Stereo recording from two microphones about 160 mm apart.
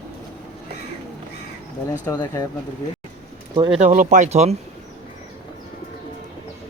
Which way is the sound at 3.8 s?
55° right (ahead or behind).